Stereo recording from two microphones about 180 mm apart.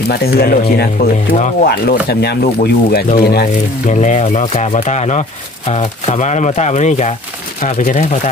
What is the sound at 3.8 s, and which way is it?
Speech, 40° left (ahead or behind).